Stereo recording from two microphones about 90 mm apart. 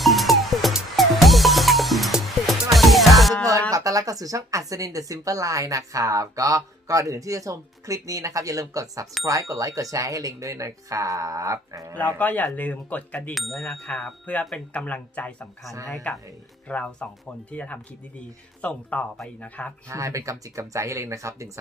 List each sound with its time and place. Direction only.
0.0 s music: centre (ahead or behind)
3.7 s speech: 40° right (ahead or behind)
11.9 s speech: 20° left (ahead or behind)
13.3 s bicycle bell: centre (ahead or behind)
14.5 s speech: 15° left (ahead or behind)
19.9 s speech: 35° right (ahead or behind)